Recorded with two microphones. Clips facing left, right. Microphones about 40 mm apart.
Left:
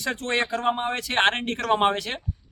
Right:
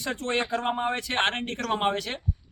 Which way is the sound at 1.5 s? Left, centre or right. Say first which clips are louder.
Left 5 dB; left.